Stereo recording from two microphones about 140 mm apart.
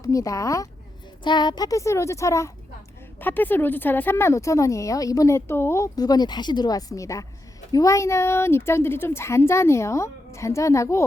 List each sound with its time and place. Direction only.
0.0 s speech: 25° left (ahead or behind)